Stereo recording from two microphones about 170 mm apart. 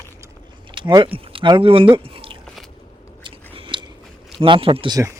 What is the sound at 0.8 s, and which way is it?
Speech, 25° right (ahead or behind).